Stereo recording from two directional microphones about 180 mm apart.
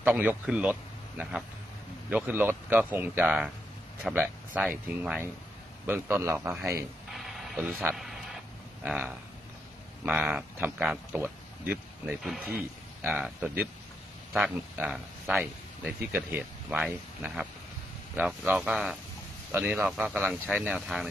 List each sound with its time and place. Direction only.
0.0 s speech: 10° right (ahead or behind)
7.1 s a sound: centre (ahead or behind)
8.8 s speech: 5° right (ahead or behind)